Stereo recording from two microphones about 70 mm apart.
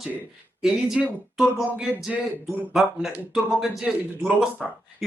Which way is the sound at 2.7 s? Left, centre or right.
Centre.